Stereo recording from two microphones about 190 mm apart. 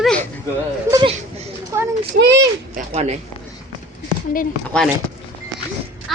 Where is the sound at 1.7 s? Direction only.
15° right (ahead or behind).